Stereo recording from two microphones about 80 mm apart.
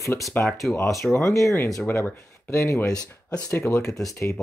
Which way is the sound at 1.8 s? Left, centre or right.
Left.